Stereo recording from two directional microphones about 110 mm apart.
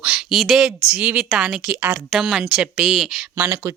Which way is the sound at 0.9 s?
15° right (ahead or behind).